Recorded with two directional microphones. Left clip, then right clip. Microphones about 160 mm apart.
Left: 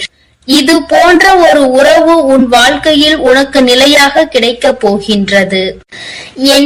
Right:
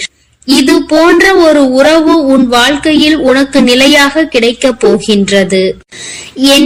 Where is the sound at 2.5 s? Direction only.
50° right (ahead or behind).